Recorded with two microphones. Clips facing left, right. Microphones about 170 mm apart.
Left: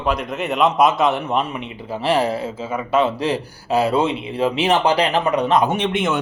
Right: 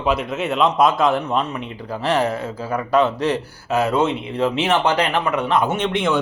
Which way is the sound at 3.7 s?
30° left (ahead or behind).